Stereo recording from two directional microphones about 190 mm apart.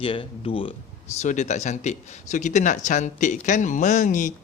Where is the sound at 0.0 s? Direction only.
25° left (ahead or behind).